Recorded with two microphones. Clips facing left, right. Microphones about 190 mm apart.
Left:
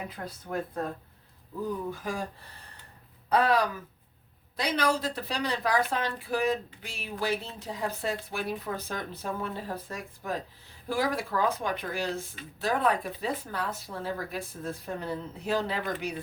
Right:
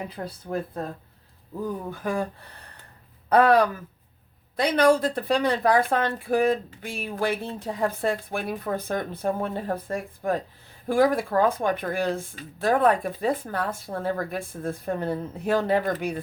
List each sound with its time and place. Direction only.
0.1 s speech: 30° right (ahead or behind)
1.9 s speech: 60° right (ahead or behind)
3.2 s speech: 55° right (ahead or behind)